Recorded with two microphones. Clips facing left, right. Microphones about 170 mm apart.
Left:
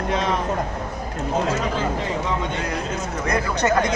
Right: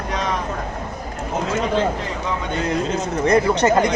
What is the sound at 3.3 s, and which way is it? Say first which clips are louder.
Speech: right 5 dB; 25° right (ahead or behind).